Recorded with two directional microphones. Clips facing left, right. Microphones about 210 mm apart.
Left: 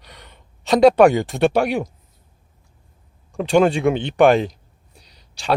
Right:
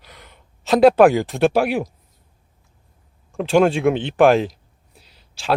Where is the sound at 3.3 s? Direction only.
Centre (ahead or behind).